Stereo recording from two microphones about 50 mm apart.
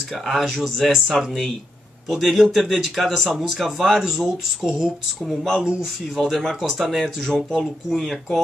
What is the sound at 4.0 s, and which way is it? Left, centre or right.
Speech, centre.